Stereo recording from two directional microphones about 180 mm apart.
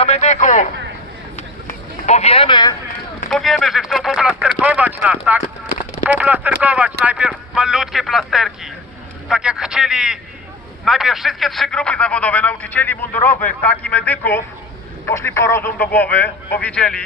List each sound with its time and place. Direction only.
0.0 s a man's voice: 40° left (ahead or behind)
1.4 s a sound: 40° left (ahead or behind); by 2.7 s 25° left (ahead or behind)
3.2 s speech: centre (ahead or behind)